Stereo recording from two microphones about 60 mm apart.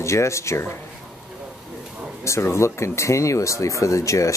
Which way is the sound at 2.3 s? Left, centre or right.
Left.